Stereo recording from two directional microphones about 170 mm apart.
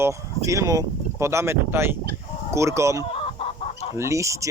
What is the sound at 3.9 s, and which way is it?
Speech, 15° right (ahead or behind).